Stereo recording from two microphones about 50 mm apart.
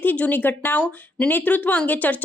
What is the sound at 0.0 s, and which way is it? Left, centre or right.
Speech, left.